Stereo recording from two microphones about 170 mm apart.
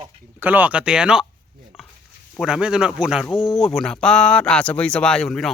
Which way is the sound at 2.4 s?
5° right (ahead or behind).